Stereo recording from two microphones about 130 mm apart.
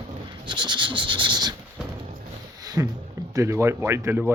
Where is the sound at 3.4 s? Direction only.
20° right (ahead or behind).